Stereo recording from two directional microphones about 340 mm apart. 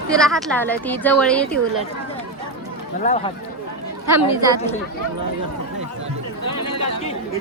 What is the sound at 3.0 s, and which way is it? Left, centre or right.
Speech, left.